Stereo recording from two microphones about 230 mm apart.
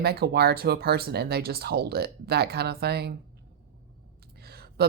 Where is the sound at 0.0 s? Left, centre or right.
Right.